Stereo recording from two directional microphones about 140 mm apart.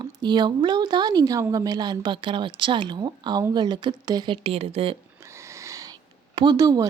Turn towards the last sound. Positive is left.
turn(degrees=-25)  # may be behind; listen again after turning